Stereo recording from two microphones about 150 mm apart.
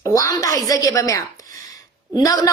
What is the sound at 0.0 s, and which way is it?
A woman's voice, 25° left (ahead or behind).